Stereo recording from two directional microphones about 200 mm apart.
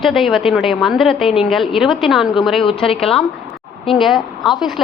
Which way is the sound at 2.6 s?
25° left (ahead or behind).